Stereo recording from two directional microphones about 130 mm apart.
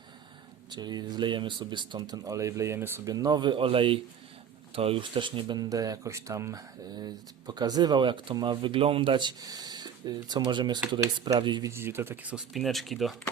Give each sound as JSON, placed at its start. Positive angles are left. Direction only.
{"t": 0.7, "sound": "speech", "side_deg": -35}
{"t": 3.1, "sound": "speech", "side_deg": -30}
{"t": 11.7, "sound": "speech", "side_deg": -20}
{"t": 12.5, "sound": "speech", "side_deg": 0}